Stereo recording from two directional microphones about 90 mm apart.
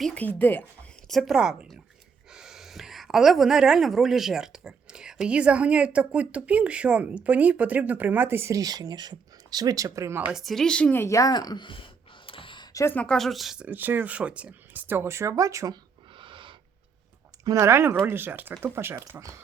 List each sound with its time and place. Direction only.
0.1 s speech: 20° left (ahead or behind)
1.0 s a woman's voice: centre (ahead or behind); by 8.5 s 25° right (ahead or behind)
8.5 s speech: 45° right (ahead or behind)
10.3 s a woman's voice: centre (ahead or behind)
10.9 s speech: 35° left (ahead or behind); by 11.8 s 60° left (ahead or behind)
12.2 s a sound: 80° left
13.1 s a woman's voice: centre (ahead or behind)
13.7 s speech: 20° right (ahead or behind); by 15.8 s 40° right (ahead or behind)
16.1 s snort: 65° right (ahead or behind)
17.4 s speech: 35° right (ahead or behind)